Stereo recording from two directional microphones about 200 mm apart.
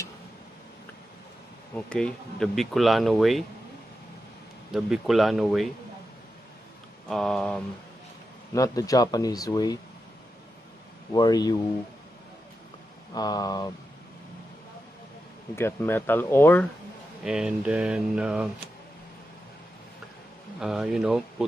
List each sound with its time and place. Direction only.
1.8 s speech: 5° left (ahead or behind)
4.6 s speech: 5° right (ahead or behind)
7.1 s speech: centre (ahead or behind)
8.5 s speech: 15° left (ahead or behind)
11.1 s speech: 20° left (ahead or behind)
13.1 s speech: 20° left (ahead or behind)
15.5 s speech: 10° left (ahead or behind)
17.2 s speech: 5° right (ahead or behind)
20.6 s speech: centre (ahead or behind)